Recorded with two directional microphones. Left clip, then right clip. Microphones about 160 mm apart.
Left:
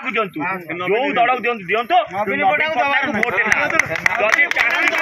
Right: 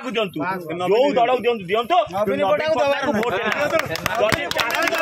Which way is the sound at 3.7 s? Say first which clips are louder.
Left 4 dB; 20° right (ahead or behind).